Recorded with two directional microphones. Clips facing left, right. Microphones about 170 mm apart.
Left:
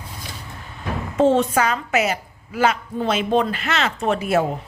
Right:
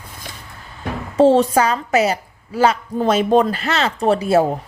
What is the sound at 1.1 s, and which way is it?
A woman's voice, 35° right (ahead or behind).